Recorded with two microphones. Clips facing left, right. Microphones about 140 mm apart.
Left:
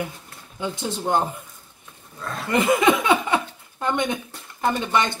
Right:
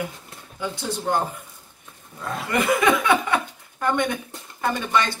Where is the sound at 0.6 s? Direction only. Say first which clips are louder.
Left 1 dB; 20° left (ahead or behind).